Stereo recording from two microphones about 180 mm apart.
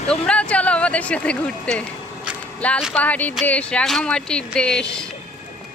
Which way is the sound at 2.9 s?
10° left (ahead or behind).